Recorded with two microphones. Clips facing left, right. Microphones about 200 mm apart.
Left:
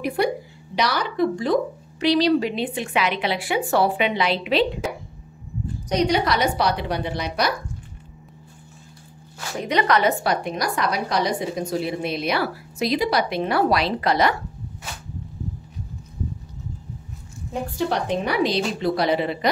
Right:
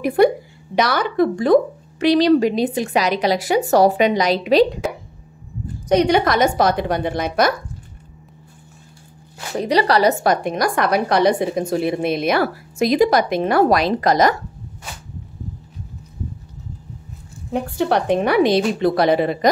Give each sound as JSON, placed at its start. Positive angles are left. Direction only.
{"t": 0.0, "sound": "a woman's voice", "side_deg": -50}
{"t": 5.9, "sound": "a woman's voice", "side_deg": -55}
{"t": 9.6, "sound": "a woman's voice", "side_deg": -35}
{"t": 17.5, "sound": "a woman's voice", "side_deg": -60}